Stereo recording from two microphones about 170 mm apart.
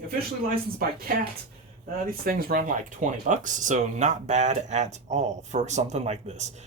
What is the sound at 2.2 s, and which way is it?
Speech, 55° right (ahead or behind).